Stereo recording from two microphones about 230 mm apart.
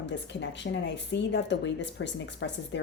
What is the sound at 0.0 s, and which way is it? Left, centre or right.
Speech, left.